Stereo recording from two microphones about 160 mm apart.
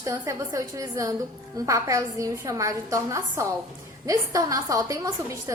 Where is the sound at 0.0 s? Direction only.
20° right (ahead or behind).